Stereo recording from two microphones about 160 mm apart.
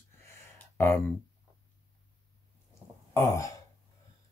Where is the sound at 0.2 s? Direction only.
15° left (ahead or behind).